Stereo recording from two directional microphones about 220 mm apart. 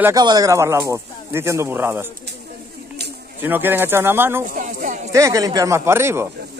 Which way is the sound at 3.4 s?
10° right (ahead or behind).